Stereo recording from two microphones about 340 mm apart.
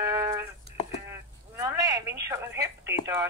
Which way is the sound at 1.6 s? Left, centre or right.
Centre.